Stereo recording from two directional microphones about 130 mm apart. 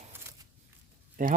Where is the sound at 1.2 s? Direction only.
90° right.